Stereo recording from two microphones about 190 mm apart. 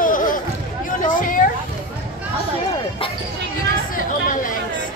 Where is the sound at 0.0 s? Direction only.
45° left (ahead or behind).